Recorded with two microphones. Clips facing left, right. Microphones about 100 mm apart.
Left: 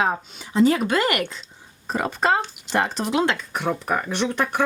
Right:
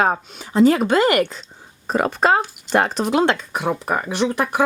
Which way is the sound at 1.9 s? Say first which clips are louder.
Right 4 dB; 65° right (ahead or behind).